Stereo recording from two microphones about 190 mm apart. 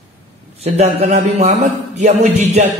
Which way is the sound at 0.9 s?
35° right (ahead or behind).